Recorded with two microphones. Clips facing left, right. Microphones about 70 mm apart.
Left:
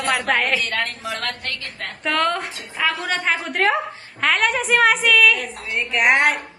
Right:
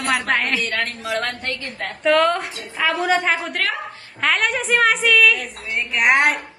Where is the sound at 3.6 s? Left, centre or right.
Left.